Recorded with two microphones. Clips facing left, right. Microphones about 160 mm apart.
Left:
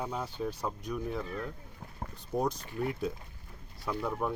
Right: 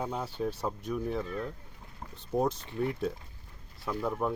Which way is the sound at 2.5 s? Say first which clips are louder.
Right 1 dB; 25° right (ahead or behind).